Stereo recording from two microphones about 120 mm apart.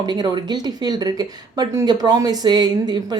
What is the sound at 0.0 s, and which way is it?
Speech, 35° right (ahead or behind).